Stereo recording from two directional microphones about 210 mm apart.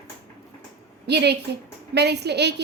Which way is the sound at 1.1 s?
50° right (ahead or behind).